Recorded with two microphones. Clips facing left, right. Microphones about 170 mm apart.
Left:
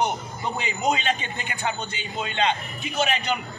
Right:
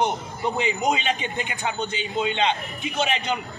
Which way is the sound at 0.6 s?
20° right (ahead or behind).